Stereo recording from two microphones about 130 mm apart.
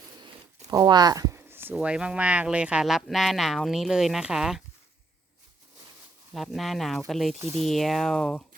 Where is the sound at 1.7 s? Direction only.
5° right (ahead or behind).